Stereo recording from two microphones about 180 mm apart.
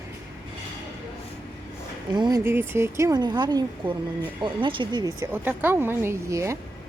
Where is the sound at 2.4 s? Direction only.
15° right (ahead or behind).